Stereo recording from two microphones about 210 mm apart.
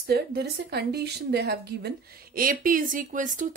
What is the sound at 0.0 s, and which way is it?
Speech, 50° right (ahead or behind).